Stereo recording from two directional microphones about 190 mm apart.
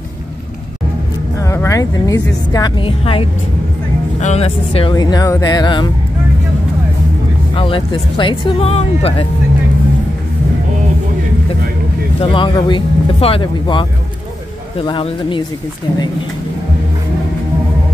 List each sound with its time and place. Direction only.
1.4 s speech: 15° left (ahead or behind); by 4.9 s 30° left (ahead or behind)
4.9 s speech: 20° left (ahead or behind)
7.5 s speech: 25° left (ahead or behind)
12.2 s speech: 25° left (ahead or behind)